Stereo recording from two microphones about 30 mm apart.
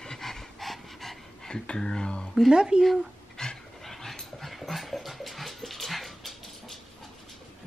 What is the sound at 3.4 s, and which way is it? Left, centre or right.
Pant, centre.